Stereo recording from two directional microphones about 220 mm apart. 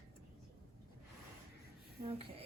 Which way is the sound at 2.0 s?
25° right (ahead or behind).